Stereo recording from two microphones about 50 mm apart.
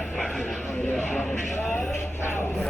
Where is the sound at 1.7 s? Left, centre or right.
Left.